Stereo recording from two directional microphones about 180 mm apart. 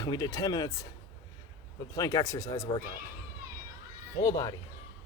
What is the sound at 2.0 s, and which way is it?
Speech, 20° left (ahead or behind).